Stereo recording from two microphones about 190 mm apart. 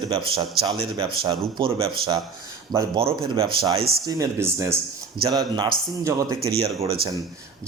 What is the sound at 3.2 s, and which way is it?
Speech, 30° right (ahead or behind).